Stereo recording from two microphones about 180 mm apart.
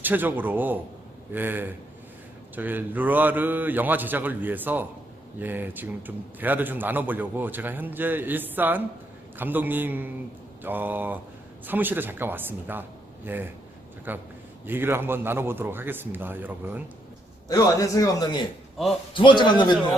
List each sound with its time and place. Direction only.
0.0 s a man's voice: 10° right (ahead or behind)
17.5 s a man's voice: 20° left (ahead or behind)